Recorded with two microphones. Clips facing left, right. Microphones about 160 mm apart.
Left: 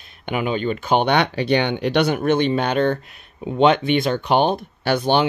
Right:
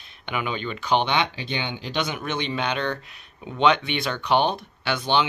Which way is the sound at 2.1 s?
50° left (ahead or behind).